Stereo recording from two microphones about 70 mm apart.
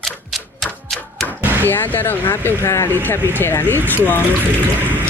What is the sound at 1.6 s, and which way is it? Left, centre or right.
Speech, left.